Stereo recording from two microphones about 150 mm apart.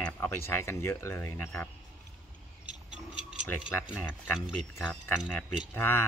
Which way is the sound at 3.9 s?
5° right (ahead or behind).